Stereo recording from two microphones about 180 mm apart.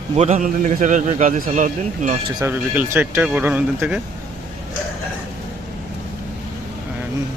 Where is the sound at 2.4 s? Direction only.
10° right (ahead or behind).